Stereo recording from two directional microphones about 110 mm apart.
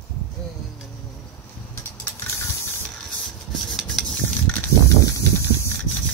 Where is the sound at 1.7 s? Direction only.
25° left (ahead or behind).